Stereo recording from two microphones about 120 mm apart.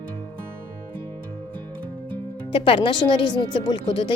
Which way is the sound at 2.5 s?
45° left (ahead or behind).